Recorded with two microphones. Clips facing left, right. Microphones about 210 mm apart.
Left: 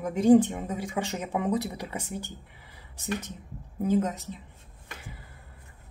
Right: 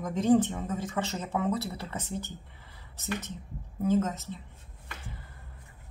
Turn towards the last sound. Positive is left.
turn(degrees=15)  # may be behind; listen again after turning